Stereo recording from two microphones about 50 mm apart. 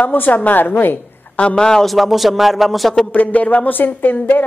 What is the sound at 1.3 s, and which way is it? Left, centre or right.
Speech, centre.